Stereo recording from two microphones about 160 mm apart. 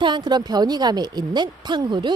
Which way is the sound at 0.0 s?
30° right (ahead or behind).